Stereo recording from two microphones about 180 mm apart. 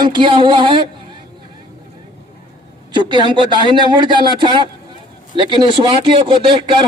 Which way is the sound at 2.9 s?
25° right (ahead or behind).